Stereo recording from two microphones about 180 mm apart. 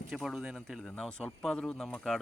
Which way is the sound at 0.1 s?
Centre (ahead or behind).